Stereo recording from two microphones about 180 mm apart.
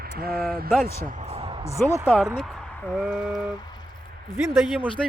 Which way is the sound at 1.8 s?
5° left (ahead or behind).